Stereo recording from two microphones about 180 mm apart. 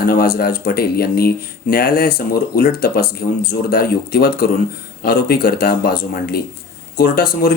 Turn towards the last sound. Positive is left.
turn(degrees=55)  # may be behind; listen again after turning